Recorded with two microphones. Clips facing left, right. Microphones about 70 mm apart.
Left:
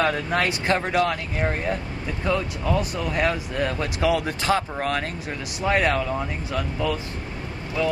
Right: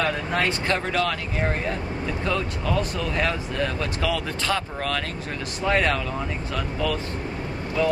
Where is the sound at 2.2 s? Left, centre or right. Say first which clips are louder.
Left 3 dB; centre.